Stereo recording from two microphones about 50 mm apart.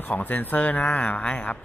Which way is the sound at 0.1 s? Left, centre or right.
Left.